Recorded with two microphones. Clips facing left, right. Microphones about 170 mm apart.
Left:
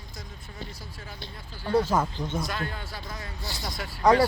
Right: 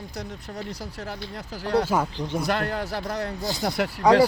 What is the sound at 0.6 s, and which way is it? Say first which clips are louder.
Speech: right 9 dB; 75° right (ahead or behind).